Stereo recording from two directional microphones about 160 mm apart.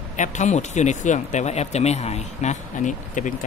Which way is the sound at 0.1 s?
50° left (ahead or behind).